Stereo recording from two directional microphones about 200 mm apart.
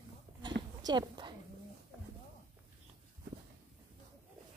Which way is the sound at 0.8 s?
20° right (ahead or behind).